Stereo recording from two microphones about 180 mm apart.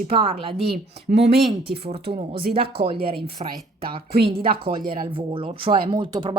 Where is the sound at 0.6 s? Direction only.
60° right (ahead or behind).